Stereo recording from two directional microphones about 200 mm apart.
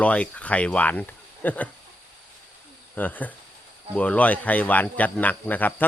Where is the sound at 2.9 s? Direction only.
10° left (ahead or behind).